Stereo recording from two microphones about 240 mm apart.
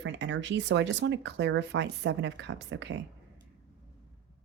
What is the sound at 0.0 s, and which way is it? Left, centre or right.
Speech, right.